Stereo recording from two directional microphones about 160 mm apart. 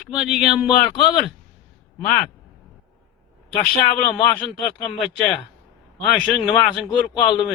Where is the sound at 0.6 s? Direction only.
30° left (ahead or behind).